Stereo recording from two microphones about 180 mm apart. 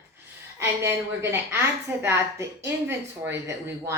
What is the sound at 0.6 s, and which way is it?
Speech, 15° right (ahead or behind).